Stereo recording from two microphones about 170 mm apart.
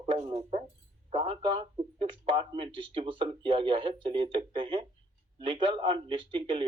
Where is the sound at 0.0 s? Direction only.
30° right (ahead or behind).